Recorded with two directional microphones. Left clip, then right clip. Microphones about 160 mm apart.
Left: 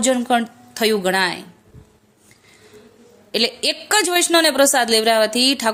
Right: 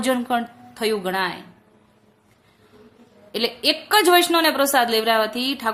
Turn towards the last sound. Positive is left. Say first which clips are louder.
# left 6 dB
turn(degrees=40)  # may be behind; listen again after turning